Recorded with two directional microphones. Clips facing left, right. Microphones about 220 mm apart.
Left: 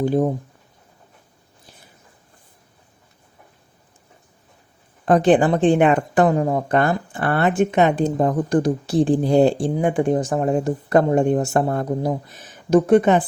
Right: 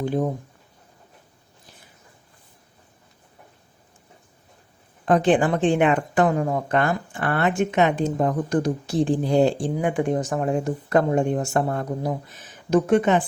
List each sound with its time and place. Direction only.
0.0 s a woman's voice: 35° left (ahead or behind)
5.0 s a woman's voice: 40° left (ahead or behind)